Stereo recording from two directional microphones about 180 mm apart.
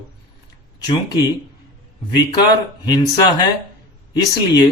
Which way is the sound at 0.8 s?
20° left (ahead or behind).